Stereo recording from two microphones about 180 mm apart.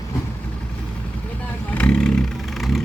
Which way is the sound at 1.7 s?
5° left (ahead or behind).